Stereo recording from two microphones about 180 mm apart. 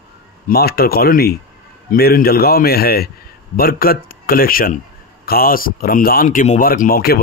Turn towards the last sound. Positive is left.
turn(degrees=55)  # may be behind; listen again after turning